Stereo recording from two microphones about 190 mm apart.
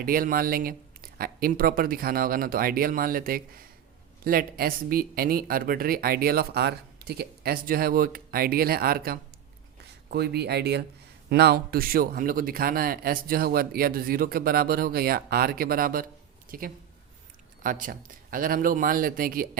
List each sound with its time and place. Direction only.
0.0 s speech: 50° right (ahead or behind)